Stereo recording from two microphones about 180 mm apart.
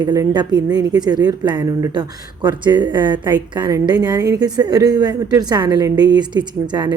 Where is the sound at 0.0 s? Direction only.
20° right (ahead or behind).